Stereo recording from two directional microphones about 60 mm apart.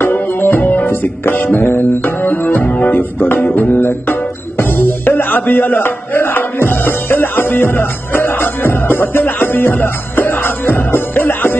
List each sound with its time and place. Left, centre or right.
0.0 s music: left